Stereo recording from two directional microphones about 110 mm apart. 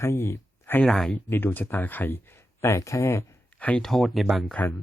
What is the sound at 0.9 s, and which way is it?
Speech, centre (ahead or behind).